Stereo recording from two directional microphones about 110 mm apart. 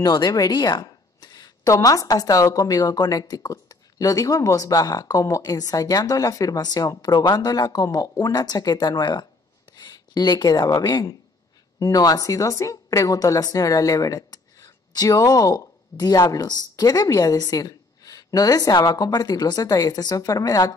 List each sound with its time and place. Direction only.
0.0 s speech: 40° left (ahead or behind)